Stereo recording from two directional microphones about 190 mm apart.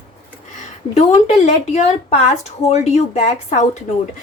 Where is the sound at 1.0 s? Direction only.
35° left (ahead or behind).